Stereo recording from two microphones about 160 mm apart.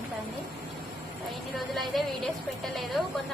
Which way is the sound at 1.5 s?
Centre (ahead or behind).